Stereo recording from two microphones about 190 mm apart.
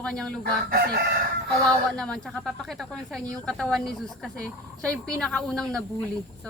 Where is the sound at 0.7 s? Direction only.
55° right (ahead or behind).